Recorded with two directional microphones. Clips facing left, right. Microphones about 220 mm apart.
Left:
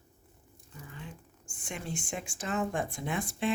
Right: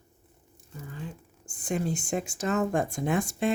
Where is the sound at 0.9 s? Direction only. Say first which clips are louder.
Right 7 dB; 35° right (ahead or behind).